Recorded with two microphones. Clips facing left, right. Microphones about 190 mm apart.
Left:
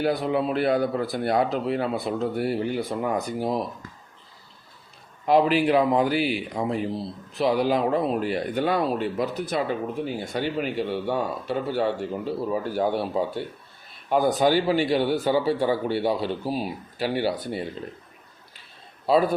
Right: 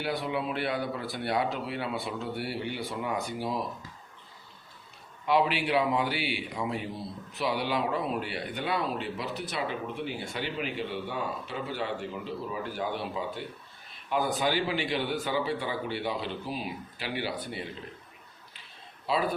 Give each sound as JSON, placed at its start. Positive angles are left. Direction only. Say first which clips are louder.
{"t": 0.0, "sound": "speech", "louder": "left 8 dB", "side_deg": 40}
{"t": 5.2, "sound": "a man's voice", "louder": "left 7 dB", "side_deg": 40}